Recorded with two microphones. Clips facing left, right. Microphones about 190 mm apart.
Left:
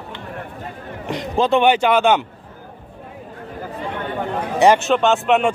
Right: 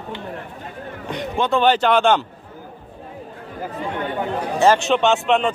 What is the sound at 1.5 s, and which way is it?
Speech, 10° left (ahead or behind).